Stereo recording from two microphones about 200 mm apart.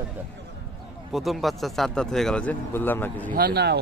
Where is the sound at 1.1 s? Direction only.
Centre (ahead or behind).